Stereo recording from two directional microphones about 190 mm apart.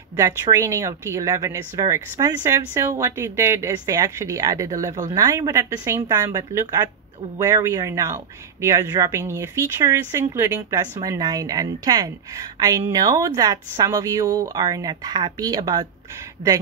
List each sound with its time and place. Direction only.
0.1 s speech: 20° right (ahead or behind)